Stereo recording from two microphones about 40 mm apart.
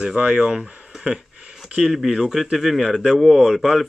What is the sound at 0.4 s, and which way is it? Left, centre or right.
Speech, centre.